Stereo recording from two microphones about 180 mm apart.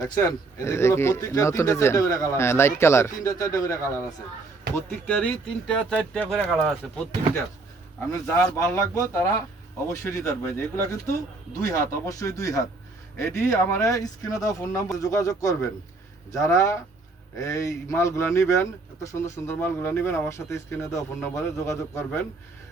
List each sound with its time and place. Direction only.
0.0 s speech: 15° left (ahead or behind); by 6.7 s 5° right (ahead or behind)
8.1 s speech: 15° left (ahead or behind)